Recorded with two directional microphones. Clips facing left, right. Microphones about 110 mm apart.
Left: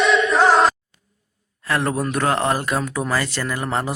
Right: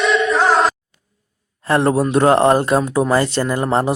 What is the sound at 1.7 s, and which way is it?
Speech, 25° right (ahead or behind).